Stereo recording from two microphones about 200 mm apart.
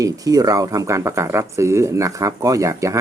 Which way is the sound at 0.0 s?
20° right (ahead or behind).